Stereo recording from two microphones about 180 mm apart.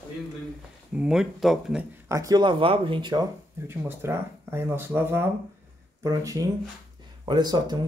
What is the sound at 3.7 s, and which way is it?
Speech, 15° right (ahead or behind).